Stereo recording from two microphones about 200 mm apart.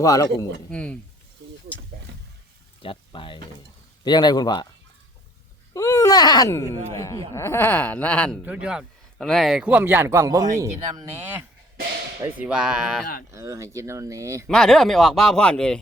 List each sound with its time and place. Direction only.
0.0 s speech: 15° left (ahead or behind)
2.8 s a man's voice: 25° left (ahead or behind)
5.7 s speech: 15° left (ahead or behind)
8.4 s speech: 5° right (ahead or behind)
13.3 s speech: 15° right (ahead or behind)
14.4 s speech: 5° left (ahead or behind)